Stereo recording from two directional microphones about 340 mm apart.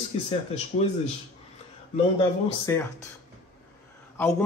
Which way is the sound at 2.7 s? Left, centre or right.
Centre.